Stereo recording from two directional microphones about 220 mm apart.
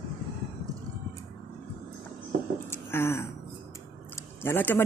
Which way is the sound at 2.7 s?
10° left (ahead or behind).